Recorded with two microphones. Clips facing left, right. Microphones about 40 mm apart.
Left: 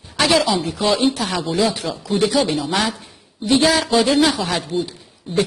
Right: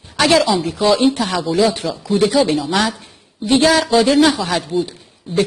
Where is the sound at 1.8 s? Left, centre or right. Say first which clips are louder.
Right 3 dB; centre.